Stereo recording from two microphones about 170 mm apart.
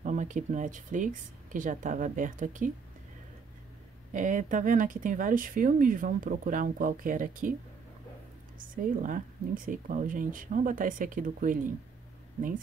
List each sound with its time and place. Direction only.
0.0 s speech: 45° right (ahead or behind)
4.1 s speech: 50° right (ahead or behind)
8.5 s speech: 55° right (ahead or behind)